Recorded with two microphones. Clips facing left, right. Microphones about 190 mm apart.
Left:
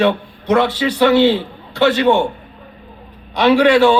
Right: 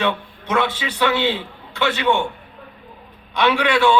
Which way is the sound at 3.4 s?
40° left (ahead or behind).